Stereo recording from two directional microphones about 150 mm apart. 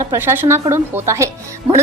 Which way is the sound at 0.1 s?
15° right (ahead or behind).